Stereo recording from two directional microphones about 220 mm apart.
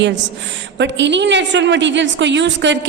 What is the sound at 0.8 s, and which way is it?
A woman's voice, 55° right (ahead or behind).